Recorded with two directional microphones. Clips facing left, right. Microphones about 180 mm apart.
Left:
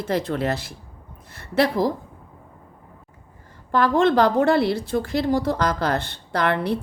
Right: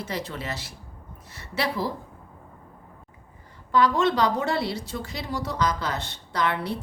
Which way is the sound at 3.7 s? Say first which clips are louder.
Left 4 dB; 50° left (ahead or behind).